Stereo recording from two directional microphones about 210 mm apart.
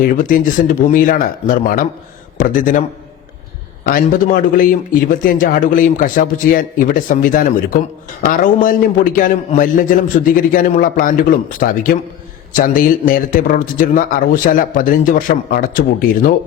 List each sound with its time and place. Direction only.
0.2 s a man's voice: 40° left (ahead or behind)
3.8 s a man's voice: 40° left (ahead or behind)